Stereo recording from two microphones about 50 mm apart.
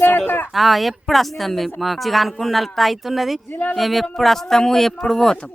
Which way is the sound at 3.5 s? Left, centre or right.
Left.